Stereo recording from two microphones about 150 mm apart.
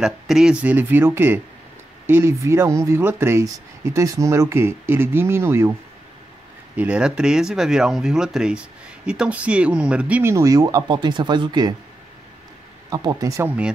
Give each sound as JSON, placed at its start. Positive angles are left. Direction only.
{"t": 0.0, "sound": "speech", "side_deg": -5}
{"t": 6.8, "sound": "speech", "side_deg": -5}
{"t": 10.3, "sound": "speech", "side_deg": -25}
{"t": 12.9, "sound": "speech", "side_deg": -25}
{"t": 13.5, "sound": "speech", "side_deg": -5}